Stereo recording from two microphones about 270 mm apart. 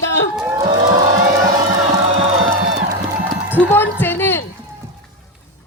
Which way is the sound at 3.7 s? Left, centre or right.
Centre.